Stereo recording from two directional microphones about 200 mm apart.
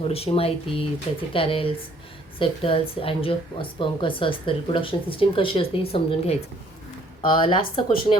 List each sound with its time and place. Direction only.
0.1 s a woman's voice: 30° left (ahead or behind)